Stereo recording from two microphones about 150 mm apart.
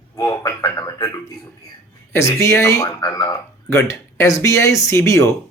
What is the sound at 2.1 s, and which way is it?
Speech, 20° left (ahead or behind).